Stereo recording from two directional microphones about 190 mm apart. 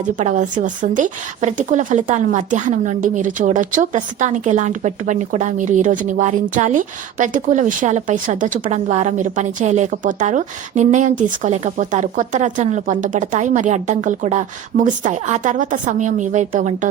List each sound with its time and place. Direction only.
0.0 s a woman's voice: 40° right (ahead or behind)